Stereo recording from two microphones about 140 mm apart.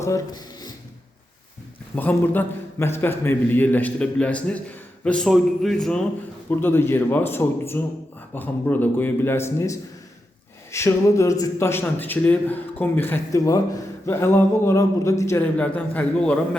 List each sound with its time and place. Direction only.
0.0 s speech: 25° left (ahead or behind)
2.0 s a man's voice: 15° left (ahead or behind)
15.5 s a man's voice: 10° left (ahead or behind)